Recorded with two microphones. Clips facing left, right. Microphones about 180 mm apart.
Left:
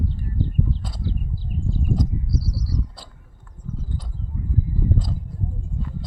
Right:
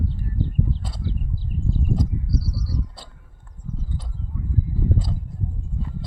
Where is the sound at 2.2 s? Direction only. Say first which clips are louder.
Even; 60° right (ahead or behind).